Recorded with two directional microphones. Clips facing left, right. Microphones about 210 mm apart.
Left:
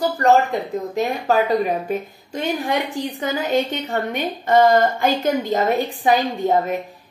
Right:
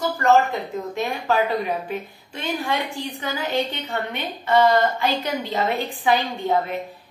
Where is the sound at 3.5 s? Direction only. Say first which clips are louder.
Left 4 dB; 45° left (ahead or behind).